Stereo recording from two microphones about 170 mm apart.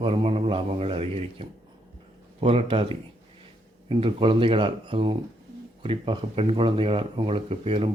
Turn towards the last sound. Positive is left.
turn(degrees=-35)  # may be behind; listen again after turning